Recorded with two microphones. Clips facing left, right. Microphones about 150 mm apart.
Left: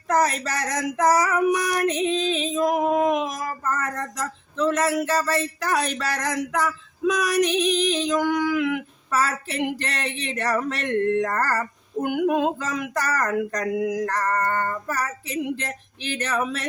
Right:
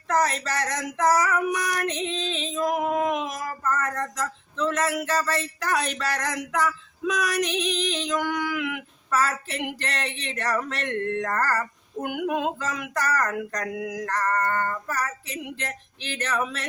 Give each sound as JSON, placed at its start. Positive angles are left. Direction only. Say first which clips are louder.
{"t": 0.1, "sound": "female singing", "louder": "left 2 dB", "side_deg": 10}
{"t": 2.6, "sound": "a sound", "louder": "left 3 dB", "side_deg": 15}
{"t": 3.8, "sound": "speech", "louder": "even", "side_deg": 10}
{"t": 8.5, "sound": "a sound", "louder": "left 7 dB", "side_deg": 0}
{"t": 9.0, "sound": "speech", "louder": "even", "side_deg": 5}
{"t": 12.3, "sound": "female singing", "louder": "left 4 dB", "side_deg": 5}
{"t": 15.4, "sound": "speech", "louder": "left 5 dB", "side_deg": 5}